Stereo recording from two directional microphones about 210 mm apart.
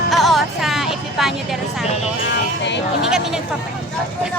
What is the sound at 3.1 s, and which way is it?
Speech, 5° right (ahead or behind).